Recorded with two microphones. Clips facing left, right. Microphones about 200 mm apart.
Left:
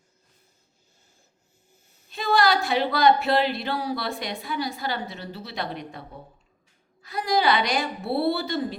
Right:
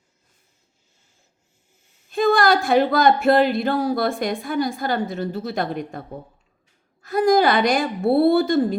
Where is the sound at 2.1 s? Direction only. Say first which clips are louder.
Right 5 dB; 50° right (ahead or behind).